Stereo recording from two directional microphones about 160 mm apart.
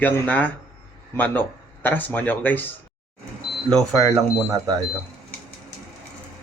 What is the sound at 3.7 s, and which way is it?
Speech, centre (ahead or behind).